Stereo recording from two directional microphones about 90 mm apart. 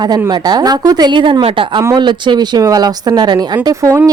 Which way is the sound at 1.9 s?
55° right (ahead or behind).